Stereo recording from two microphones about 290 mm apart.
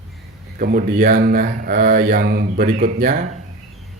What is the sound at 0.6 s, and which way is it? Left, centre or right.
Speech, right.